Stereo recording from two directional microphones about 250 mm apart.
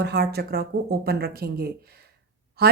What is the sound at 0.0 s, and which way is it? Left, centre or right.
Speech, right.